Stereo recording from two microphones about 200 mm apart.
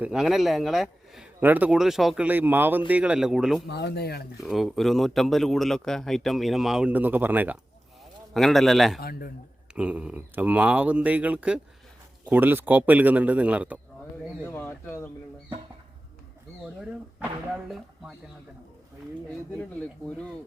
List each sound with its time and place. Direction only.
0.0 s speech: 5° right (ahead or behind)
3.7 s speech: 55° left (ahead or behind)
4.4 s speech: centre (ahead or behind)
9.0 s speech: 50° left (ahead or behind)
9.7 s speech: 5° right (ahead or behind)
14.4 s speech: 10° left (ahead or behind)